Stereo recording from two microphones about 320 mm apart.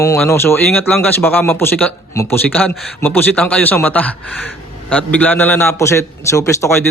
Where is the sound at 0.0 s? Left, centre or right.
Centre.